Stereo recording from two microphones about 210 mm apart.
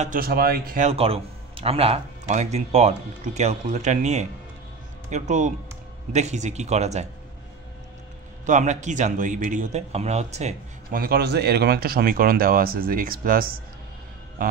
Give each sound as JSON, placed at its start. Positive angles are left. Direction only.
{"t": 0.0, "sound": "a man's voice", "side_deg": -45}
{"t": 8.5, "sound": "a man's voice", "side_deg": -35}